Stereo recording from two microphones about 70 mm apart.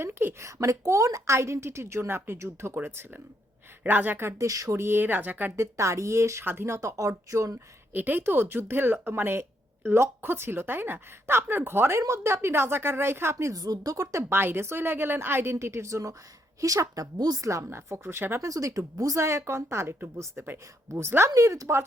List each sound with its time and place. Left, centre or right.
0.0 s speech: right
0.4 s speech: right
4.4 s speech: right
5.5 s a woman's voice: right
6.4 s speech: right
6.7 s a woman's voice: right
7.9 s speech: right
13.5 s a woman's voice: right
18.4 s speech: right
21.2 s a woman's voice: right